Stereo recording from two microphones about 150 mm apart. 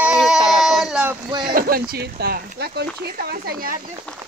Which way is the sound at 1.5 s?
75° right (ahead or behind).